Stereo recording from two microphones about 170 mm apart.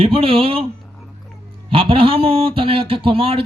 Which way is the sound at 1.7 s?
30° right (ahead or behind).